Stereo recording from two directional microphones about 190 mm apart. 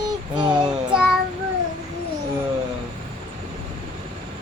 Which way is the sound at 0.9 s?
5° right (ahead or behind).